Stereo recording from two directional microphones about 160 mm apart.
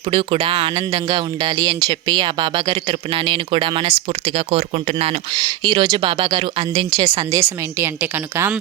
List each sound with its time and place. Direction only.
0.1 s speech: 35° right (ahead or behind)
5.4 s a woman's voice: 25° right (ahead or behind); by 8.5 s 10° right (ahead or behind)